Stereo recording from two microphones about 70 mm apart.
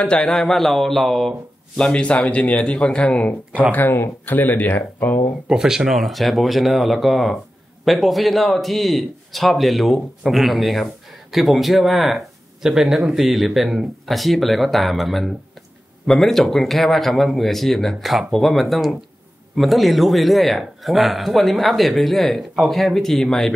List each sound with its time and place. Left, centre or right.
0.0 s a man's voice: centre
1.8 s a man's voice: centre
3.7 s speech: left
5.5 s a man's voice: centre